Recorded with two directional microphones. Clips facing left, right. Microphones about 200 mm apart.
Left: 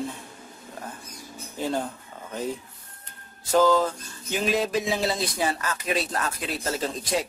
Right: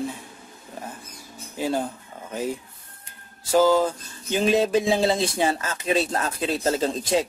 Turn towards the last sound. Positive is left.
turn(degrees=-25)  # may be behind; listen again after turning